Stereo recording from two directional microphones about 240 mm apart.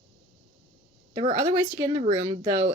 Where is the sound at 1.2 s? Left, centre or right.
Centre.